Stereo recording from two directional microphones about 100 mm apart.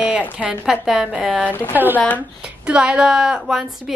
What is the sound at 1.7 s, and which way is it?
Speech, 20° right (ahead or behind).